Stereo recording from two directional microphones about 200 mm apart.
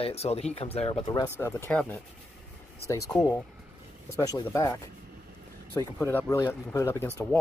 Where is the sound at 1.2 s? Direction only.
10° left (ahead or behind).